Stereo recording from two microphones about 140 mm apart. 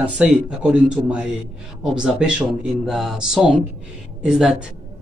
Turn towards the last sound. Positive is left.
turn(degrees=-5)  # may be behind; listen again after turning